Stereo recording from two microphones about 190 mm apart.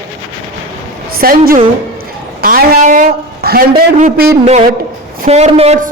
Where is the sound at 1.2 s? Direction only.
50° right (ahead or behind).